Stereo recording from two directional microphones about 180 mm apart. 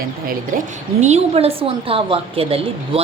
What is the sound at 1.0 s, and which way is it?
A woman's voice, 35° right (ahead or behind).